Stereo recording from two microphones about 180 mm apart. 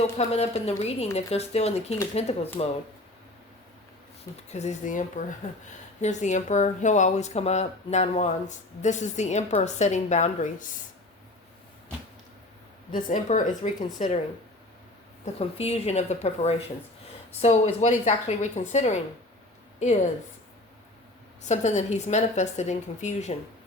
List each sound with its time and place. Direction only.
0.0 s speech: 35° left (ahead or behind)
4.4 s speech: 40° left (ahead or behind)
12.9 s speech: 50° left (ahead or behind)
15.2 s speech: 35° left (ahead or behind)
17.7 s speech: 40° left (ahead or behind)
21.4 s speech: 40° left (ahead or behind)